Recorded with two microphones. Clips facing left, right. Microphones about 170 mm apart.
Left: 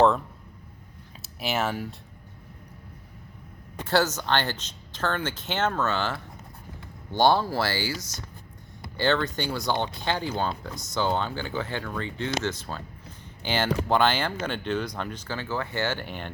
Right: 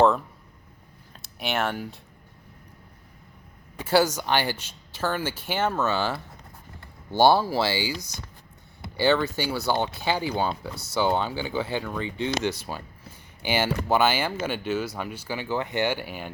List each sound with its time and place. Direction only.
1.2 s speech: centre (ahead or behind)
3.8 s speech: 10° right (ahead or behind)
7.6 s speech: 20° right (ahead or behind)
9.0 s speech: 10° right (ahead or behind)